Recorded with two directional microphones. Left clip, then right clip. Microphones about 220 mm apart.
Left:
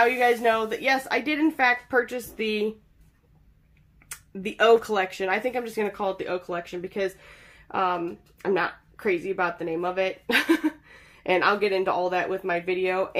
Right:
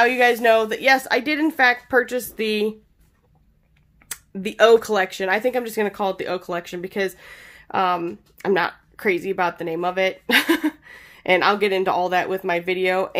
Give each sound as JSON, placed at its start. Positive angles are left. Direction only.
{"t": 0.0, "sound": "speech", "side_deg": -55}
{"t": 4.1, "sound": "speech", "side_deg": -40}